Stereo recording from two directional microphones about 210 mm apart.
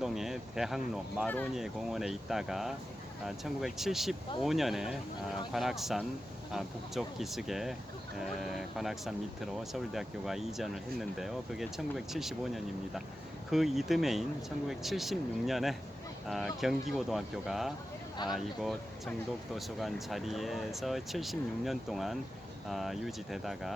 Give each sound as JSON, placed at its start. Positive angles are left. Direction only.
{"t": 0.0, "sound": "speech", "side_deg": 0}